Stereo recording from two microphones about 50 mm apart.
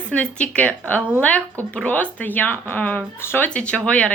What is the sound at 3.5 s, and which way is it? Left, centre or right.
Speech, left.